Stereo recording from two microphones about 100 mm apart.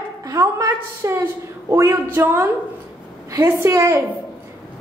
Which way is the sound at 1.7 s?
25° right (ahead or behind).